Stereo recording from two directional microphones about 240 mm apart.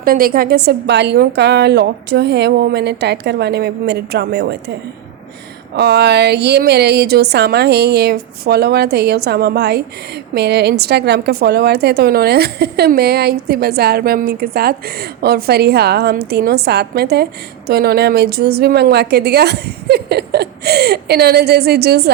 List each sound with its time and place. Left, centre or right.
0.0 s a woman's voice: right
5.7 s a woman's voice: right